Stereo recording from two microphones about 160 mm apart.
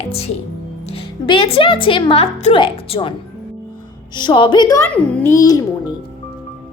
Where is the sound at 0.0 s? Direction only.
40° left (ahead or behind).